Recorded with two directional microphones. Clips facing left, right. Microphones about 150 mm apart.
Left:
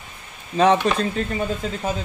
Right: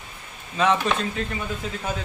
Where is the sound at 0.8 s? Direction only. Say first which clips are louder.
Left 3 dB; 40° left (ahead or behind).